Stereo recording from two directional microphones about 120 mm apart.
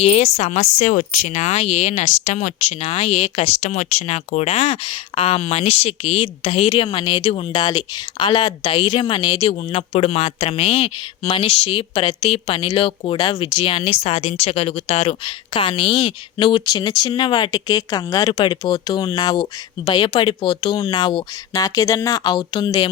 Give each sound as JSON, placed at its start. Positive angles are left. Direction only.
{"t": 0.0, "sound": "speech", "side_deg": 60}
{"t": 9.4, "sound": "speech", "side_deg": 60}
{"t": 15.5, "sound": "speech", "side_deg": 45}